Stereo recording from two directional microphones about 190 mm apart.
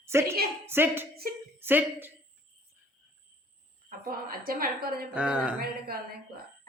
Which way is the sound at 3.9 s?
50° right (ahead or behind).